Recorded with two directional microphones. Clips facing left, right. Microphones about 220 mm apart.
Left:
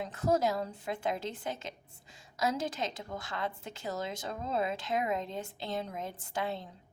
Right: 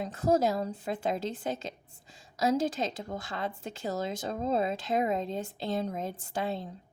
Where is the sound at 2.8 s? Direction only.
30° right (ahead or behind).